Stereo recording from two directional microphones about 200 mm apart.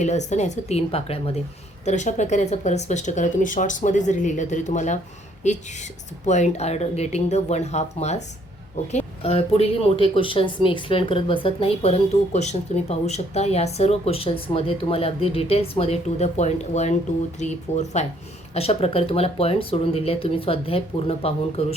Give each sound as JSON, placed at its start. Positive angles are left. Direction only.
{"t": 0.0, "sound": "speech", "side_deg": 35}